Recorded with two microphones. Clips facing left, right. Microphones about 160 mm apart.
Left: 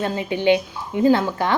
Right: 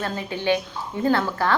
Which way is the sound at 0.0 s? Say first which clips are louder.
Left 6 dB; 20° left (ahead or behind).